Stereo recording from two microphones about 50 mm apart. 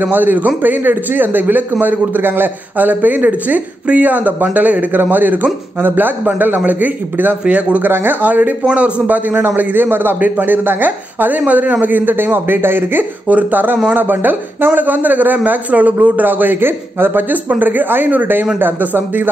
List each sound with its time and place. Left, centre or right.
0.0 s a man's voice: right
7.9 s speech: right
8.2 s a man's voice: right
13.3 s a man's voice: right
17.5 s a man's voice: right